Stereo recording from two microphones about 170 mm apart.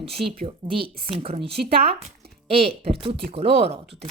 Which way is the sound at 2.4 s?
35° right (ahead or behind).